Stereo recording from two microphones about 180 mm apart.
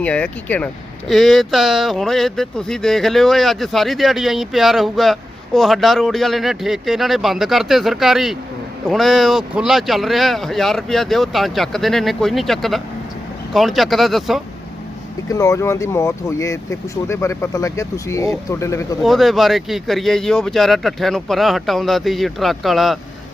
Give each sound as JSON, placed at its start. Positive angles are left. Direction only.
{"t": 0.0, "sound": "speech", "side_deg": 5}
{"t": 15.3, "sound": "speech", "side_deg": 15}
{"t": 19.0, "sound": "speech", "side_deg": 0}